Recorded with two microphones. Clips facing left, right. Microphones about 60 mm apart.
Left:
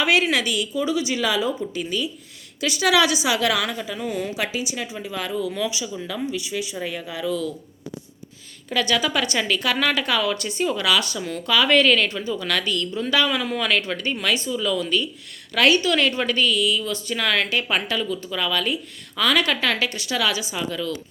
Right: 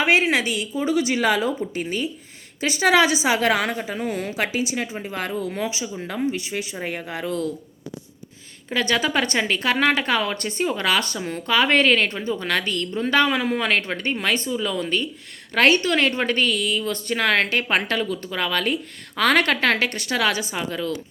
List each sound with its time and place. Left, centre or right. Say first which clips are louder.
0.0 s a woman's voice: right 1 dB; right
0.9 s a woman's voice: right 6 dB; right
8.7 s a woman's voice: right 1 dB; right